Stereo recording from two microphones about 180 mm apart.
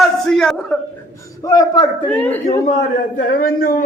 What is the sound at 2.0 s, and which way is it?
Speech, 10° left (ahead or behind).